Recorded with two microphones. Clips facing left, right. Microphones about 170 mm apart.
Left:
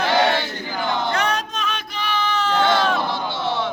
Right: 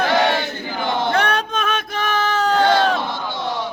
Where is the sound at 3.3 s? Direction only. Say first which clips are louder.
Left 1 dB; 15° right (ahead or behind).